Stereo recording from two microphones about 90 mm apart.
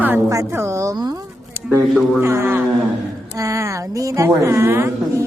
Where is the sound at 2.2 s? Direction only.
30° right (ahead or behind).